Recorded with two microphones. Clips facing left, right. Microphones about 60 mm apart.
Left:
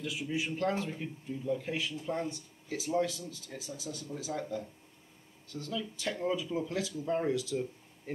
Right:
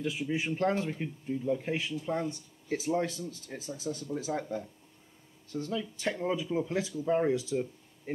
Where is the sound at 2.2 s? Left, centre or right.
Right.